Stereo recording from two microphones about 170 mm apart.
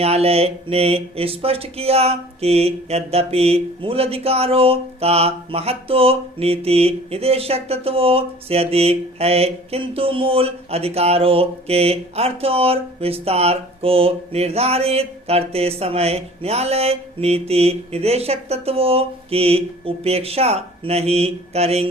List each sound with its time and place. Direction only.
0.0 s speech: 35° right (ahead or behind)